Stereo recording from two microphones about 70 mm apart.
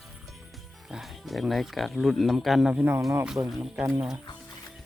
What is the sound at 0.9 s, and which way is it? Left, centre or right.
Speech, centre.